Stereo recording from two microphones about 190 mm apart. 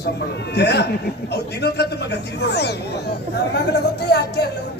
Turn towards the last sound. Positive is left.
turn(degrees=60)  # may be behind; listen again after turning